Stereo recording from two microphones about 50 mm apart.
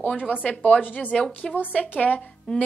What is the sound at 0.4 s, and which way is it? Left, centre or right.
Speech, left.